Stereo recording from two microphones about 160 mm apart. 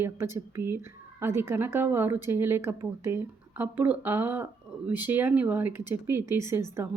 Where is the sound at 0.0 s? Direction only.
15° right (ahead or behind).